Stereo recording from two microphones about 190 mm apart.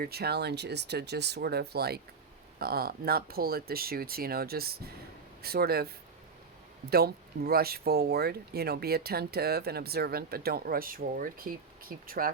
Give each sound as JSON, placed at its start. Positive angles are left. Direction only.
{"t": 0.0, "sound": "speech", "side_deg": -55}
{"t": 6.9, "sound": "speech", "side_deg": -55}